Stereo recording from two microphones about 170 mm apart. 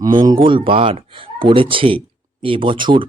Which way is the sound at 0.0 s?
25° right (ahead or behind).